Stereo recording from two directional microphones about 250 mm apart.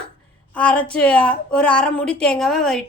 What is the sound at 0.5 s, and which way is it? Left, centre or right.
A woman's voice, centre.